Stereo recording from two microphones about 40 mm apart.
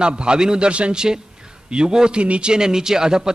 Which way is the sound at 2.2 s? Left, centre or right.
Right.